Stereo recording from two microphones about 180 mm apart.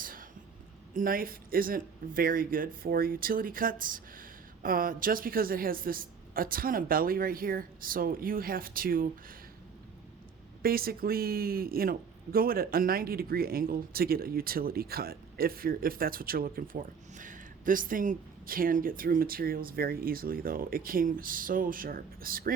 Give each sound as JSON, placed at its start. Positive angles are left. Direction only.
{"t": 0.0, "sound": "a sound", "side_deg": -50}
{"t": 0.9, "sound": "speech", "side_deg": -50}
{"t": 10.6, "sound": "speech", "side_deg": -55}